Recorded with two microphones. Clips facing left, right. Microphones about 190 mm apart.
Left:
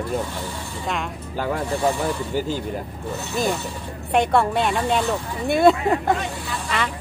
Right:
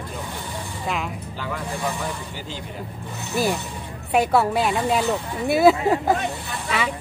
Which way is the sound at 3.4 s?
5° right (ahead or behind).